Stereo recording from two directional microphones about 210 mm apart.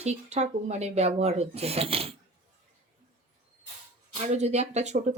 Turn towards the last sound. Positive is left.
turn(degrees=-35)  # may be behind; listen again after turning